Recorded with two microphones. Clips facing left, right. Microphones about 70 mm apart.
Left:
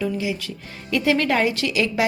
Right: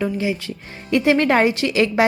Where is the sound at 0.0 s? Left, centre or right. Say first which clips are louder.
Right 3 dB; right.